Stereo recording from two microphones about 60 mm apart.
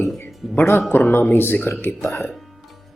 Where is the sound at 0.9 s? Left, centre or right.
Left.